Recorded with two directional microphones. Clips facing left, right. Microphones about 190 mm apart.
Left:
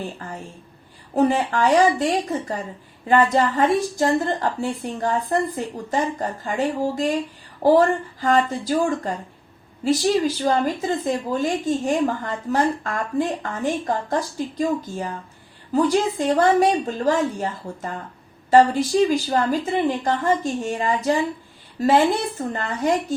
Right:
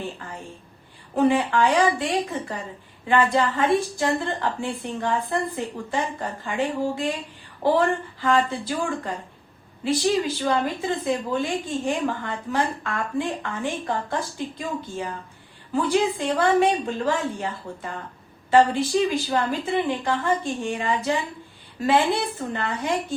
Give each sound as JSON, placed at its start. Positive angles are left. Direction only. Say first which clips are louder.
{"t": 0.2, "sound": "a sound", "louder": "left 4 dB", "side_deg": 40}
{"t": 1.1, "sound": "a woman's voice", "louder": "left 1 dB", "side_deg": 40}
{"t": 3.1, "sound": "a woman's voice", "louder": "left 3 dB", "side_deg": 40}